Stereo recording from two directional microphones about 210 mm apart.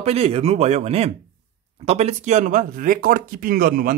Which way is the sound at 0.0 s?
30° right (ahead or behind).